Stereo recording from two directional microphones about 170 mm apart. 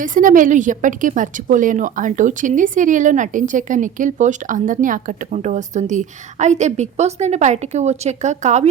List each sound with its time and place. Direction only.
0.0 s a woman's voice: 50° right (ahead or behind)